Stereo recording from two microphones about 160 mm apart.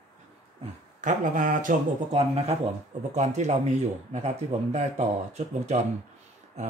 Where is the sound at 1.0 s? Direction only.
55° right (ahead or behind).